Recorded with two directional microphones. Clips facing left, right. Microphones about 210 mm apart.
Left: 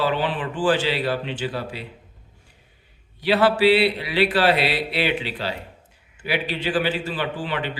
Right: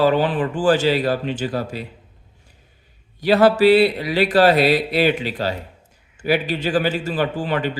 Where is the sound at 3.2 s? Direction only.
45° right (ahead or behind).